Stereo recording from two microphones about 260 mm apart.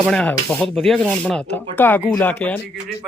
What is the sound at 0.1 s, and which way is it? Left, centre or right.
Rub, centre.